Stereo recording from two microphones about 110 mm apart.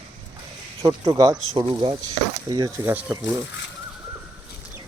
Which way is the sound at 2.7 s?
20° right (ahead or behind).